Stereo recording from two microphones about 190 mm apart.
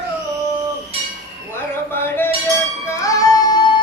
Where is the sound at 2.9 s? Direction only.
15° left (ahead or behind).